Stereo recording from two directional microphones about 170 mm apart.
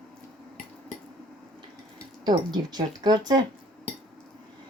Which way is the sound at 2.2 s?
25° right (ahead or behind).